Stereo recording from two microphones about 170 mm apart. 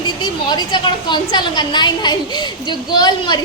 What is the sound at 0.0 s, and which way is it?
A woman's voice, 25° left (ahead or behind).